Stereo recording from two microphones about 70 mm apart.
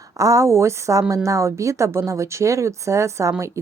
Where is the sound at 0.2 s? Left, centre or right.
Right.